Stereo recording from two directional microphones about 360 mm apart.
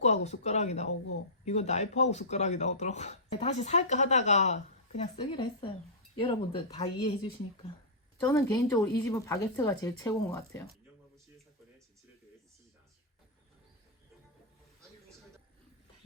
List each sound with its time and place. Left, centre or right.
0.0 s speech: centre